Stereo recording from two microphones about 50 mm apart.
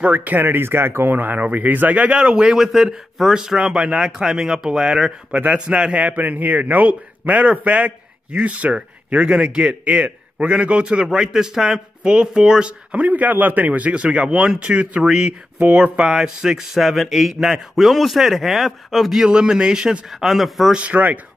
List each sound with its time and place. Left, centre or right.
0.0 s a man's voice: right; by 12.7 s centre
12.9 s speech: right; by 17.4 s centre
17.4 s a man's voice: centre
20.1 s speech: centre
20.7 s speech: right